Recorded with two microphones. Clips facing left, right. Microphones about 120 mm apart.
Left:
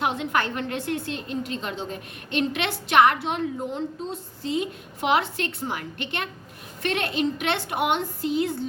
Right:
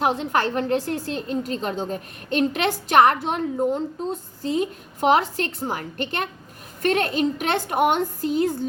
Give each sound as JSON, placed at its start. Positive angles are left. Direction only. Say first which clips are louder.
{"t": 0.0, "sound": "a woman's voice", "louder": "right 3 dB", "side_deg": -40}